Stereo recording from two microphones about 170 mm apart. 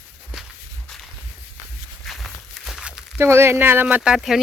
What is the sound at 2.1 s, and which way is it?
Walk, centre (ahead or behind).